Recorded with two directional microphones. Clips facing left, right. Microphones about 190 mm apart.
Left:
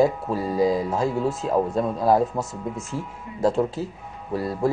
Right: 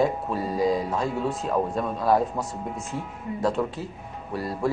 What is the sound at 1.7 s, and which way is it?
Speech, 25° left (ahead or behind).